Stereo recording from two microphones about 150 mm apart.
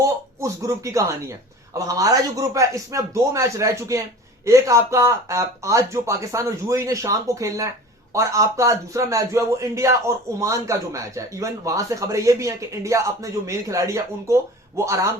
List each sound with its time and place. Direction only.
0.0 s a man's voice: 20° right (ahead or behind)